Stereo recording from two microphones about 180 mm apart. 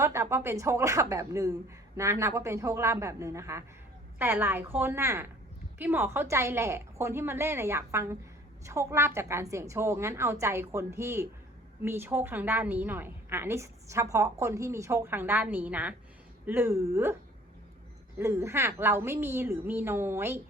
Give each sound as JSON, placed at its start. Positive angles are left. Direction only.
{"t": 0.0, "sound": "a woman's voice", "side_deg": -15}
{"t": 18.2, "sound": "a woman's voice", "side_deg": -15}